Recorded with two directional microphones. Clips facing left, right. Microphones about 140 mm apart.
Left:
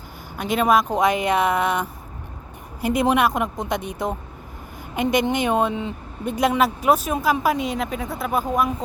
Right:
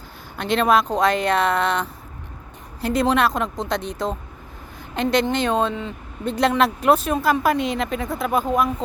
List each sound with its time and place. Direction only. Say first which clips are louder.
0.3 s speech: even; 10° left (ahead or behind)